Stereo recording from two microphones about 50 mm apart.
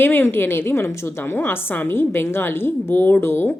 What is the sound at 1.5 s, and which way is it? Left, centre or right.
A woman's voice, left.